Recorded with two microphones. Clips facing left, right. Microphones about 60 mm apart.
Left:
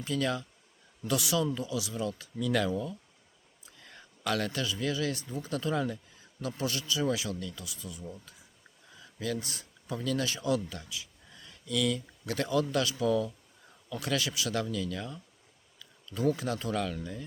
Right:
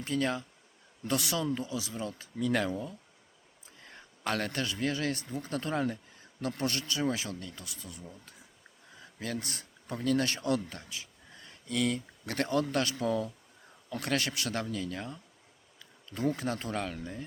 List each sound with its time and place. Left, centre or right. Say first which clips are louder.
0.0 s speech: even; right
1.0 s speech: left 2 dB; right
7.0 s speech: left 2 dB; right
13.9 s speech: even; right